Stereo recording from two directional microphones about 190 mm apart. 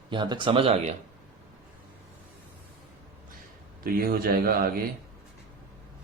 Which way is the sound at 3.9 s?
50° right (ahead or behind).